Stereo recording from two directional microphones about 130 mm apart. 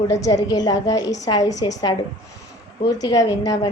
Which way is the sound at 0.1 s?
25° left (ahead or behind).